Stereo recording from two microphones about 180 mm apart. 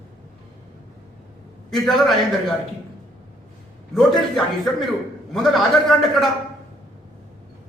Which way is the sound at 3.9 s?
Centre (ahead or behind).